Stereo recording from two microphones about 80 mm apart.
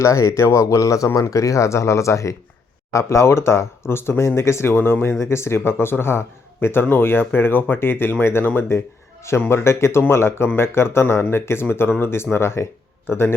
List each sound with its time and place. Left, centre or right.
0.0 s speech: left